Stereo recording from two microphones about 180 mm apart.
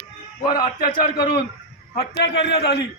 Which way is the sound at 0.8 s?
55° left (ahead or behind).